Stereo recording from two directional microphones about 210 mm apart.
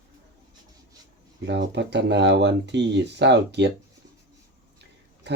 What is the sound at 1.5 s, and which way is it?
Speech, 55° right (ahead or behind).